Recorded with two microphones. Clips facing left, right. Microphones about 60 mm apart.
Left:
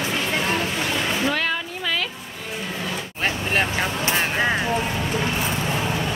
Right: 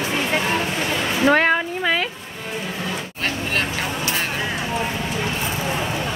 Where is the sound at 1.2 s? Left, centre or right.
Right.